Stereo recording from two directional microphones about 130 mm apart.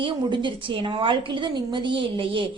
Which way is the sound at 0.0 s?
40° right (ahead or behind).